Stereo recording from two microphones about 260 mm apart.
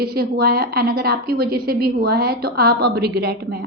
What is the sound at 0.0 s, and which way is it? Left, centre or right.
A woman's voice, right.